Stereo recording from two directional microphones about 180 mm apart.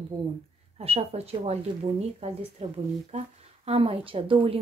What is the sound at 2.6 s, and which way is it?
A woman's voice, 35° right (ahead or behind).